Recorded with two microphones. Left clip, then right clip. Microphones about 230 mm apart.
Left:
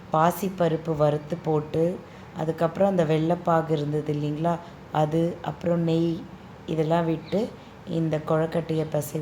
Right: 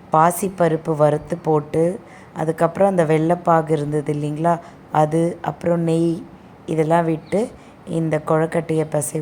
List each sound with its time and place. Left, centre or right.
0.1 s a woman's voice: right